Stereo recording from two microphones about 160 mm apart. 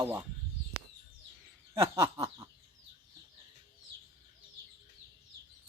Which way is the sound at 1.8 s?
30° right (ahead or behind).